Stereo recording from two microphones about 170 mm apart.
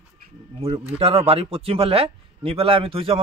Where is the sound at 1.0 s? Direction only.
35° right (ahead or behind).